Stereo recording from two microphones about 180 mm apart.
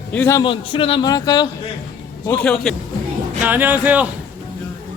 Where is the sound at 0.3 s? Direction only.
30° left (ahead or behind).